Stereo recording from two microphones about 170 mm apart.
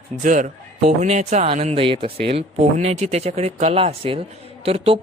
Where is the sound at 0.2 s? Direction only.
45° right (ahead or behind).